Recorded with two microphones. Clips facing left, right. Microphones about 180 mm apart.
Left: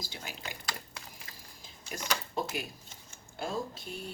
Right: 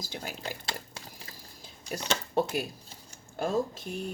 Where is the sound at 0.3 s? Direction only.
30° right (ahead or behind).